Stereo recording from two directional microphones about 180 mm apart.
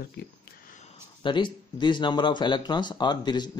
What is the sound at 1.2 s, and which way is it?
Speech, 25° left (ahead or behind).